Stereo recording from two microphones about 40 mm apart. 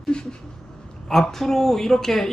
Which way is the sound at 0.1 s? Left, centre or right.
Left.